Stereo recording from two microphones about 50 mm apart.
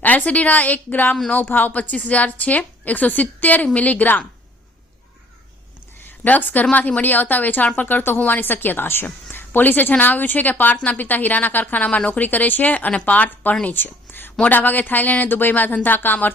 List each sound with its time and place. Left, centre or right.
0.0 s speech: left
6.2 s speech: left
9.3 s a sound: left
10.0 s speech: left